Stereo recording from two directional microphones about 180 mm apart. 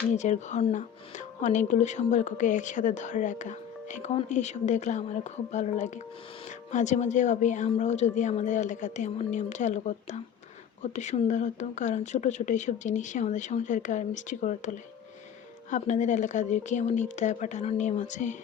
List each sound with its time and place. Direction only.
0.1 s speech: 40° left (ahead or behind)
15.7 s speech: 45° left (ahead or behind)